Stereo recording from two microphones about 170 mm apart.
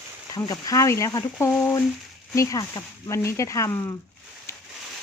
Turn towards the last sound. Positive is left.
turn(degrees=15)  # may be behind; listen again after turning